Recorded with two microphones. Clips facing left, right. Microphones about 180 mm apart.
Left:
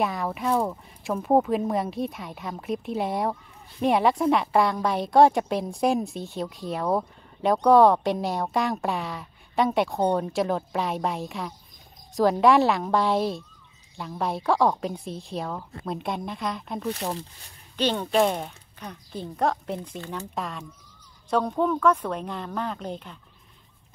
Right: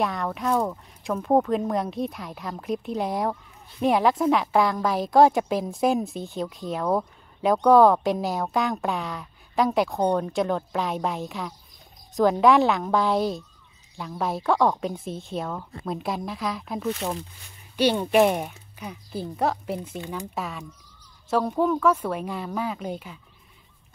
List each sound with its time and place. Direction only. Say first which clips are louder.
0.0 s a woman's voice: even; 5° left (ahead or behind)